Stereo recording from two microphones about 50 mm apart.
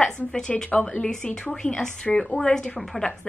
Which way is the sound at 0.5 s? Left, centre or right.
Left.